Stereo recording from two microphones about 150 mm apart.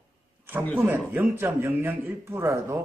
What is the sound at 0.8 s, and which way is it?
A man's voice, 15° right (ahead or behind).